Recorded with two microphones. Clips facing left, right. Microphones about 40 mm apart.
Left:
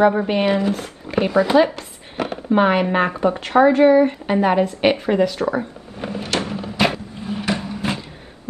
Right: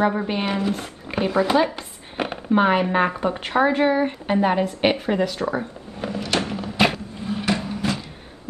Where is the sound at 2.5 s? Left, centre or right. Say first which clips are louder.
Left 2 dB; centre.